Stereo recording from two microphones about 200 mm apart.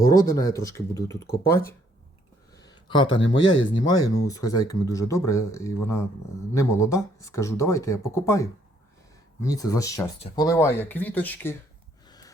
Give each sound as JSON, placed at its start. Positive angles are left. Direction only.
{"t": 0.1, "sound": "speech", "side_deg": 15}
{"t": 2.5, "sound": "a sound", "side_deg": 20}
{"t": 3.8, "sound": "speech", "side_deg": 20}
{"t": 12.0, "sound": "snort", "side_deg": 20}